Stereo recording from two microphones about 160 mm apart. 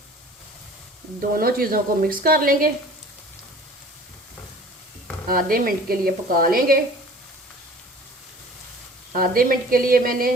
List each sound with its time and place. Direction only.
1.3 s a woman's voice: 65° right (ahead or behind)
5.3 s a woman's voice: 65° right (ahead or behind)
9.1 s a woman's voice: 65° right (ahead or behind)